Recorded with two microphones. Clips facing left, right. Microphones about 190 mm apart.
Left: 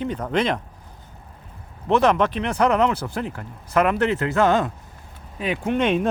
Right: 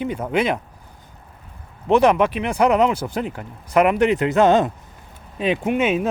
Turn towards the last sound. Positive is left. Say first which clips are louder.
# right 1 dB
turn(degrees=-5)  # may be behind; listen again after turning